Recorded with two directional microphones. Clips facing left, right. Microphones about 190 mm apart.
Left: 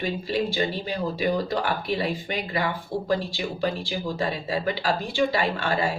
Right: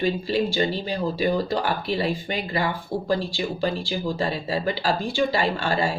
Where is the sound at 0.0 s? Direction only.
30° right (ahead or behind).